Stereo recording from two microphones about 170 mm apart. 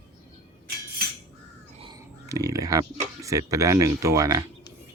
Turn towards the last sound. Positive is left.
turn(degrees=-20)  # may be behind; listen again after turning